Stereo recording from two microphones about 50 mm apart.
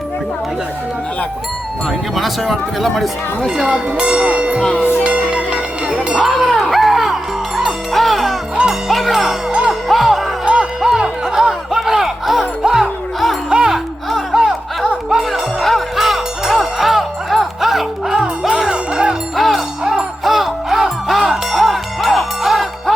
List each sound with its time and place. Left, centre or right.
1.9 s speech: centre
3.4 s speech: centre
5.0 s music: right
6.2 s music: centre
9.5 s music: centre
9.9 s music: centre
10.4 s music: right
10.8 s music: centre
19.4 s music: centre
19.8 s music: centre